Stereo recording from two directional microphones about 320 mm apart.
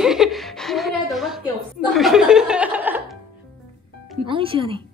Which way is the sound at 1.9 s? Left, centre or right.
Centre.